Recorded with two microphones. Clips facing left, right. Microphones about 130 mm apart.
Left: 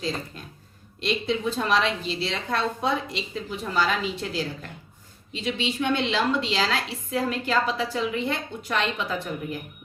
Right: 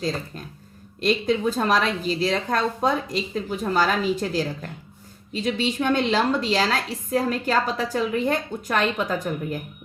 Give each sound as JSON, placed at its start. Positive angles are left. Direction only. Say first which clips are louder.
{"t": 1.0, "sound": "a woman's voice", "louder": "right 4 dB", "side_deg": -45}